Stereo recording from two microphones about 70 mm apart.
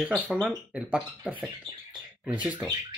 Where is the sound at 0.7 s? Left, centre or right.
Centre.